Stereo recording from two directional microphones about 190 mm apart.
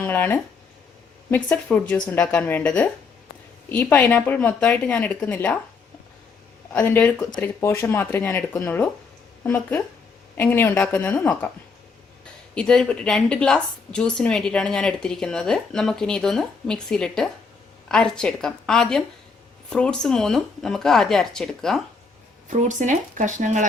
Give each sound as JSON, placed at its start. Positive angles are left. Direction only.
{"t": 0.0, "sound": "a woman's voice", "side_deg": 10}
{"t": 6.7, "sound": "a woman's voice", "side_deg": 10}
{"t": 12.5, "sound": "a woman's voice", "side_deg": 5}
{"t": 22.4, "sound": "speech", "side_deg": -40}